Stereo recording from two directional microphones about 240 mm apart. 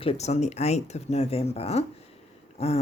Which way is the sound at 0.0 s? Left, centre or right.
Left.